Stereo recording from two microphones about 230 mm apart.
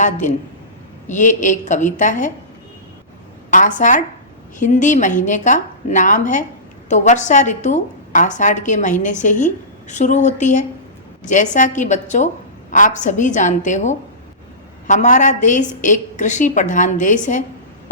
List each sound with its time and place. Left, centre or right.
0.0 s a woman's voice: left
3.5 s a woman's voice: left